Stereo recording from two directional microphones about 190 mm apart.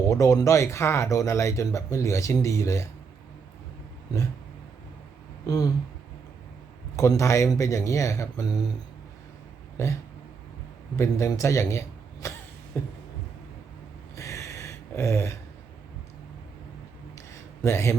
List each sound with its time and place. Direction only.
0.1 s speech: 15° left (ahead or behind)
5.5 s speech: 20° left (ahead or behind)
6.9 s speech: 15° left (ahead or behind)
9.8 s a man's voice: 15° left (ahead or behind)
14.2 s a sound: 15° left (ahead or behind)
17.6 s speech: 15° left (ahead or behind)